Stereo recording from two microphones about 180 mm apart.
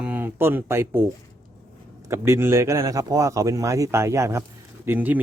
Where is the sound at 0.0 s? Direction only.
10° right (ahead or behind).